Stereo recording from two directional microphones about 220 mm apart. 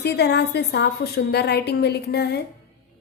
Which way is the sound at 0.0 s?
50° left (ahead or behind).